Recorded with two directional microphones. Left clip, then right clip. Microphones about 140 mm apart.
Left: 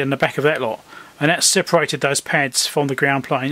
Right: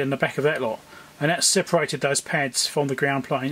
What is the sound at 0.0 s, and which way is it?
Speech, 25° left (ahead or behind).